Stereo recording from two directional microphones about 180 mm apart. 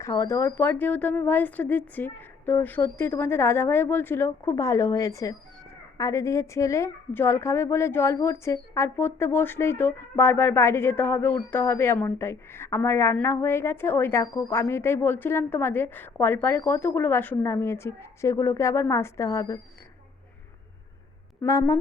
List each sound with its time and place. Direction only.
0.0 s a woman's voice: 15° left (ahead or behind)
21.4 s a woman's voice: 15° left (ahead or behind)